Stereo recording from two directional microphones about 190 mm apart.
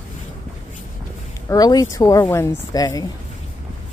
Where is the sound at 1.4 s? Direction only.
20° left (ahead or behind).